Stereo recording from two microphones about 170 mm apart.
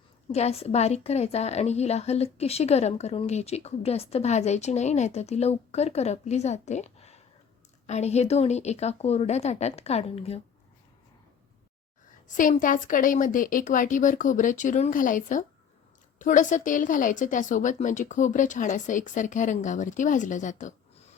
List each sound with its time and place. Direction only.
0.3 s a woman's voice: 40° left (ahead or behind)
12.3 s a woman's voice: 50° left (ahead or behind)